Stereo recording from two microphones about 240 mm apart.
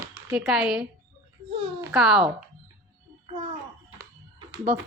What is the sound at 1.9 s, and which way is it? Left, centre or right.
Speech, centre.